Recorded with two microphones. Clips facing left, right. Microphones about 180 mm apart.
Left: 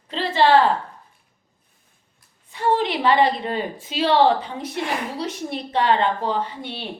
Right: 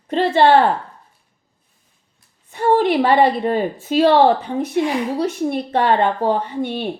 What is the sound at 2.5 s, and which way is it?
A woman's voice, 55° right (ahead or behind).